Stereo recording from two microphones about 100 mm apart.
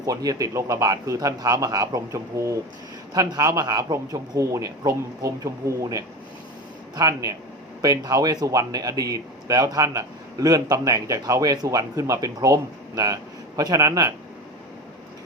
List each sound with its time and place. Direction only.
0.0 s speech: 35° right (ahead or behind)
13.6 s speech: 35° right (ahead or behind)